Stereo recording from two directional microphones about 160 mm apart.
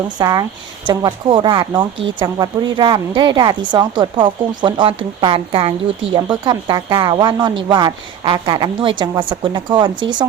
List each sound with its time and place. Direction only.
0.2 s a woman's voice: 25° right (ahead or behind)